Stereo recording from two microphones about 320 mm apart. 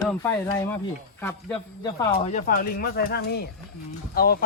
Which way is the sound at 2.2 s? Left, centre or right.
Left.